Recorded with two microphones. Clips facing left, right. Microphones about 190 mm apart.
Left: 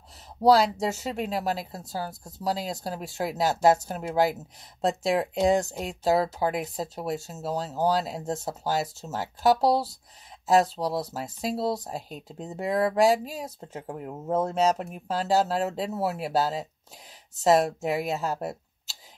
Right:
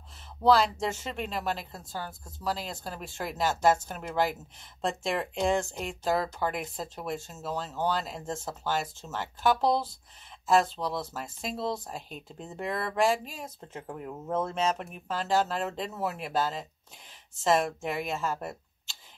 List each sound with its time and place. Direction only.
0.4 s speech: 40° left (ahead or behind)